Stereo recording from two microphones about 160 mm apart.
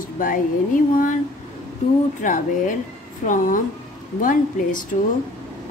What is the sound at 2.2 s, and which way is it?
A woman's voice, 55° left (ahead or behind).